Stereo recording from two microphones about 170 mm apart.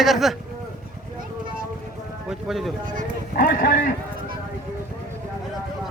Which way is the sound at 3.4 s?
60° left (ahead or behind).